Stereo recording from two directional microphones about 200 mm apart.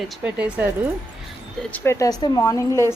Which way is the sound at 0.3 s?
5° right (ahead or behind).